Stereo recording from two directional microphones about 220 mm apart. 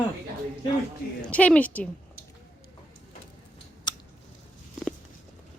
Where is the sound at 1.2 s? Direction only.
5° left (ahead or behind).